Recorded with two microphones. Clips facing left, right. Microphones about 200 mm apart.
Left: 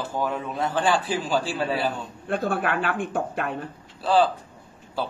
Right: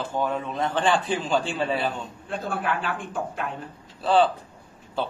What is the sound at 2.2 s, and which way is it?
Speech, 60° left (ahead or behind).